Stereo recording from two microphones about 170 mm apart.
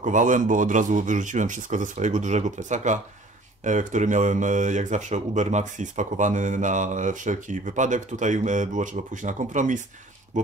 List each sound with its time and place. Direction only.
0.0 s speech: 50° right (ahead or behind)